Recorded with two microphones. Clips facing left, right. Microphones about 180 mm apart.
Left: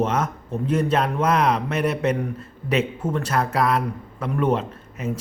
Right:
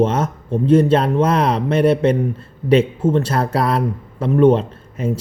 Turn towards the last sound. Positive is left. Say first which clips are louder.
# right 6 dB
turn(degrees=-30)  # may be behind; listen again after turning